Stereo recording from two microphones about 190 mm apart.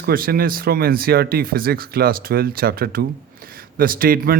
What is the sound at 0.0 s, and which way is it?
A man's voice, 50° right (ahead or behind).